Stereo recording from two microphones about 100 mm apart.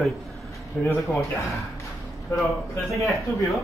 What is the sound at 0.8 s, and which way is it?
Speech, 10° left (ahead or behind).